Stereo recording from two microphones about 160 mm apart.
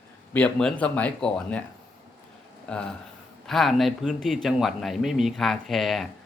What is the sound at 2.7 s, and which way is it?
Speech, 5° left (ahead or behind).